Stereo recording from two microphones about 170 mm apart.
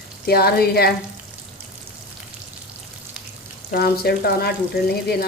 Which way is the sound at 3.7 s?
65° left (ahead or behind).